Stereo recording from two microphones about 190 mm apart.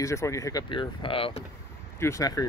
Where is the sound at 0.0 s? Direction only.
15° left (ahead or behind).